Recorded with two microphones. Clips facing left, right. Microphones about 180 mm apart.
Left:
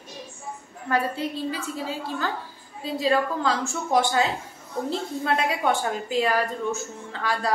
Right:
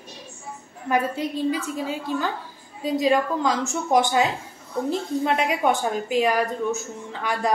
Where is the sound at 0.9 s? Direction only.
15° right (ahead or behind).